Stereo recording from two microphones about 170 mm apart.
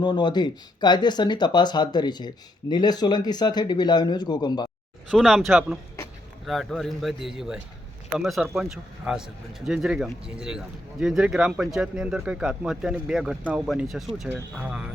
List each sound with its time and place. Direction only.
0.0 s speech: 25° left (ahead or behind)
5.1 s speech: centre (ahead or behind)